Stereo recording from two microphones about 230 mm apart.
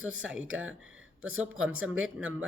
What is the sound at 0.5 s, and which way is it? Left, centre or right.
Speech, right.